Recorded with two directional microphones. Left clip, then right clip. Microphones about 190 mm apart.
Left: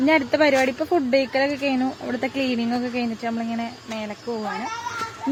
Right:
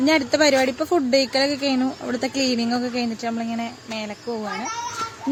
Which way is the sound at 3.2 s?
5° right (ahead or behind).